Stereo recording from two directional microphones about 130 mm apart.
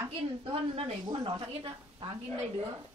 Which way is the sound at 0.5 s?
45° right (ahead or behind).